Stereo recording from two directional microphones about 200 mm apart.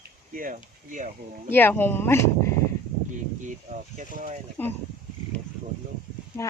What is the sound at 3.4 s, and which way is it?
Speech, 40° right (ahead or behind).